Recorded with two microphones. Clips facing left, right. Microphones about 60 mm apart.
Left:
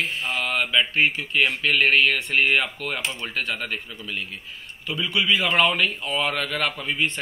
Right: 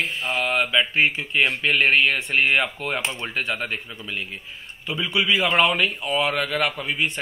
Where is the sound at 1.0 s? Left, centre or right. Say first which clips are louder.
Right 1 dB; centre.